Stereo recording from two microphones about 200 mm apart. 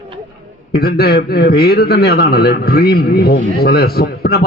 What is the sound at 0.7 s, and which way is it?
A man's voice, 50° left (ahead or behind).